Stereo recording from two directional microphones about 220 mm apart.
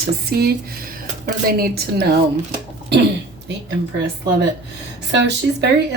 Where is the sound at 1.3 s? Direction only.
45° right (ahead or behind).